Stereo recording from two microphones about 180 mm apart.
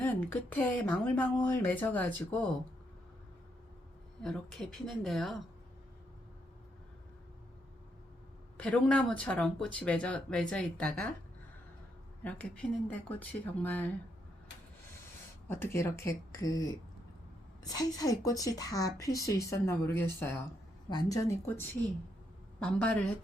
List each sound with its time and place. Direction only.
0.0 s speech: 10° left (ahead or behind)
4.2 s a woman's voice: centre (ahead or behind)
8.5 s speech: 5° left (ahead or behind)
12.2 s speech: 10° left (ahead or behind)
15.4 s a woman's voice: 15° left (ahead or behind)